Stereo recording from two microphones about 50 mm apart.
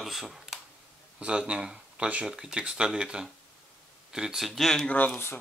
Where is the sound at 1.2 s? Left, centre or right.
Right; by 4.7 s centre.